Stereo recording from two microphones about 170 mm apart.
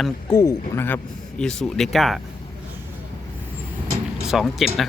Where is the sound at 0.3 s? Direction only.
15° left (ahead or behind); by 2.2 s centre (ahead or behind).